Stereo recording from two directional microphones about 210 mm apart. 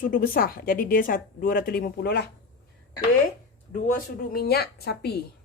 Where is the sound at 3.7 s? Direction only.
40° left (ahead or behind).